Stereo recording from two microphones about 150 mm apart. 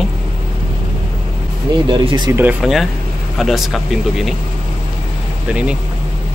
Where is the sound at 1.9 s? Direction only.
35° right (ahead or behind).